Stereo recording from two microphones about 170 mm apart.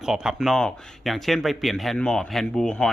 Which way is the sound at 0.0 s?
5° right (ahead or behind).